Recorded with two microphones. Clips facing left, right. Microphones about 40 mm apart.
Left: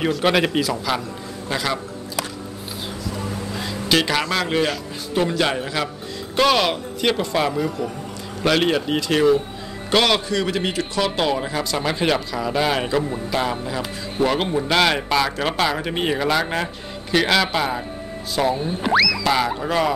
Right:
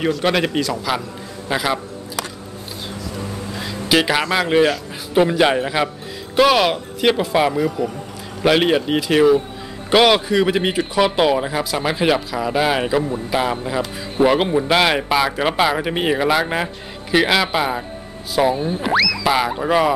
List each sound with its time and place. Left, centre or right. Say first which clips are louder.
0.0 s a man's voice: even; centre
1.5 s speech: right 3 dB; centre
3.5 s a man's voice: right 3 dB; centre
6.3 s a man's voice: right 3 dB; centre
19.2 s speech: right 2 dB; centre